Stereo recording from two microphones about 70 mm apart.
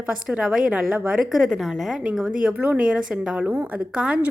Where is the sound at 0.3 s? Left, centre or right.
Centre.